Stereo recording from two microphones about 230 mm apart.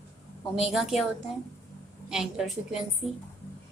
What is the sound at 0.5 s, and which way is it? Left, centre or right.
Speech, centre.